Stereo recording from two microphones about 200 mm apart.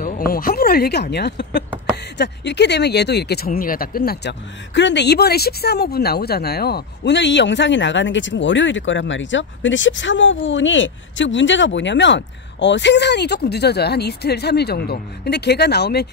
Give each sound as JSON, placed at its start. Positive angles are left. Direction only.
{"t": 0.0, "sound": "speech", "side_deg": 45}